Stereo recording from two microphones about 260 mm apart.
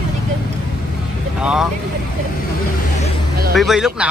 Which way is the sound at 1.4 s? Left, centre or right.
Centre.